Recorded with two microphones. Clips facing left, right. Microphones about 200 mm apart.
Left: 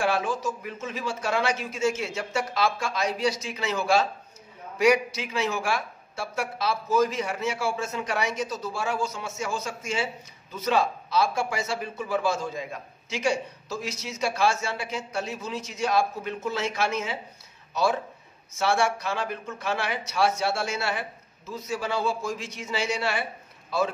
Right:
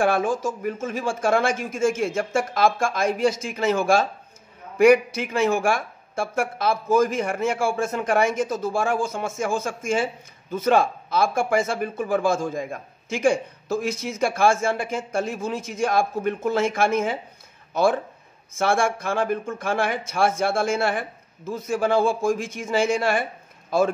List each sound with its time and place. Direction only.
0.0 s speech: 50° right (ahead or behind)